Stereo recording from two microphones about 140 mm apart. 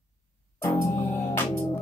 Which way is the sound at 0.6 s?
20° left (ahead or behind).